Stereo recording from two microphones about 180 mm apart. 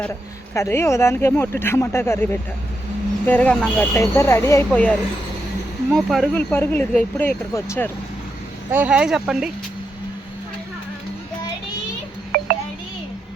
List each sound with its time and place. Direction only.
0.0 s speech: 15° left (ahead or behind)
8.7 s speech: 10° right (ahead or behind)
12.3 s a sound: 60° right (ahead or behind)